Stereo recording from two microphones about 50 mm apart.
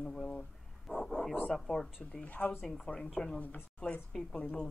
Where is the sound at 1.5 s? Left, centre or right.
Centre.